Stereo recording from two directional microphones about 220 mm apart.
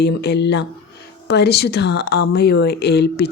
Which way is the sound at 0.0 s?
50° left (ahead or behind).